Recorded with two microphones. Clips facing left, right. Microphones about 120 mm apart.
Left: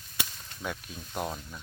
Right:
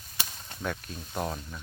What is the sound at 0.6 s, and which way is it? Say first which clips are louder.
Speech: right 2 dB; 5° left (ahead or behind).